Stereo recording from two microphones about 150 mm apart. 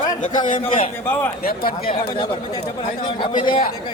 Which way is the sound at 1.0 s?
15° left (ahead or behind).